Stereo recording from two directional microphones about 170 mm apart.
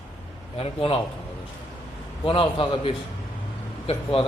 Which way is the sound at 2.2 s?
30° left (ahead or behind).